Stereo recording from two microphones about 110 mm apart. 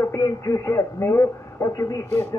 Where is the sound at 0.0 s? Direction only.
30° left (ahead or behind).